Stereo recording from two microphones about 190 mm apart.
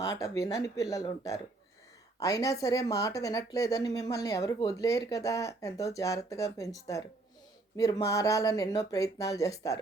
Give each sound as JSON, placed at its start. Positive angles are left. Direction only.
{"t": 0.0, "sound": "speech", "side_deg": 15}